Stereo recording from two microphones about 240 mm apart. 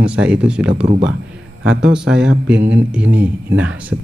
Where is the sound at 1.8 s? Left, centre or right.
Centre.